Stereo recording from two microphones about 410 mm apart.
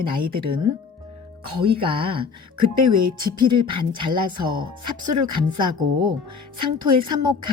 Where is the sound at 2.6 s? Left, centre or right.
Right.